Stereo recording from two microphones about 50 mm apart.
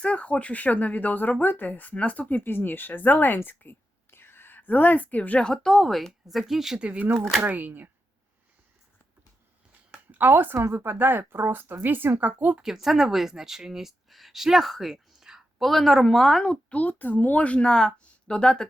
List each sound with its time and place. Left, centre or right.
0.0 s speech: left
2.4 s speech: left
4.1 s whispering: left
5.4 s speech: centre
6.7 s speech: right
7.0 s speech: right
10.2 s speech: right
12.6 s speech: centre
16.4 s speech: centre
16.7 s speech: left; by 18.7 s centre